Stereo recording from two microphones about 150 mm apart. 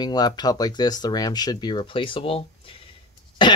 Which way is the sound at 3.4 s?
30° left (ahead or behind).